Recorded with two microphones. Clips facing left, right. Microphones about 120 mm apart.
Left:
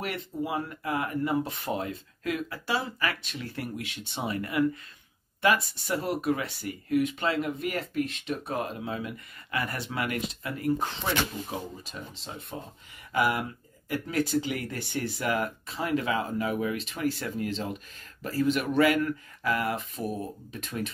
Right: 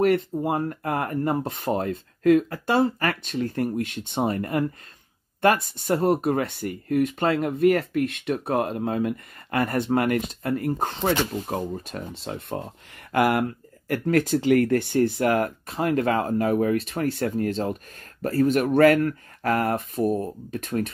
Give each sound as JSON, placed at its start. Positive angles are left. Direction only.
{"t": 0.0, "sound": "speech", "side_deg": -50}
{"t": 12.3, "sound": "speech", "side_deg": -65}